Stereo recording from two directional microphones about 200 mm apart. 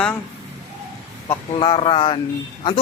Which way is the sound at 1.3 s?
25° left (ahead or behind).